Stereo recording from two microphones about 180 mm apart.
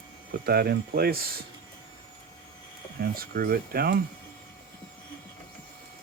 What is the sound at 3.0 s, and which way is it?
Speech, 55° right (ahead or behind).